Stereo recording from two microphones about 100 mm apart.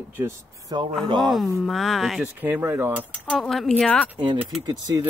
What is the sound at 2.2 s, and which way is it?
Speech, 20° right (ahead or behind).